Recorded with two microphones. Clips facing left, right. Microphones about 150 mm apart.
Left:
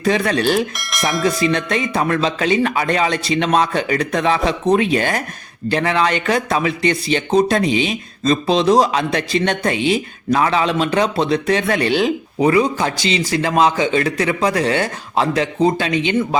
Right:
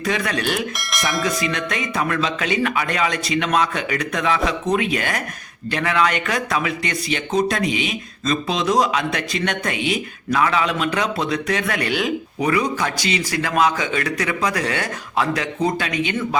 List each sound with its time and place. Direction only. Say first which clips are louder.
0.0 s speech: left 6 dB; 30° left (ahead or behind)
0.8 s bell: even; centre (ahead or behind)
1.4 s speech: left 6 dB; 30° left (ahead or behind)